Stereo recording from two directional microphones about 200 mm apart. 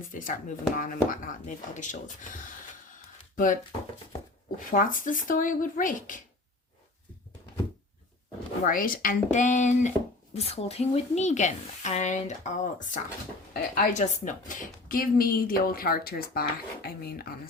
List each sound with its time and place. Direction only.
0.1 s speech: 40° left (ahead or behind)
8.6 s a woman's voice: 45° left (ahead or behind)